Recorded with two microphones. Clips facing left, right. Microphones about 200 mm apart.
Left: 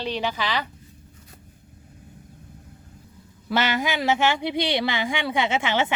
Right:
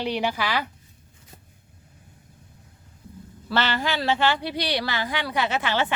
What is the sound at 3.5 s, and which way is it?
Speech, 10° left (ahead or behind).